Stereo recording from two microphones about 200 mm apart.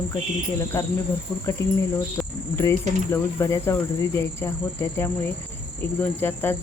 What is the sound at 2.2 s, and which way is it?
Cricket, centre (ahead or behind).